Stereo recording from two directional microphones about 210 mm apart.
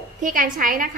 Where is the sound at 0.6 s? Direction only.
40° right (ahead or behind).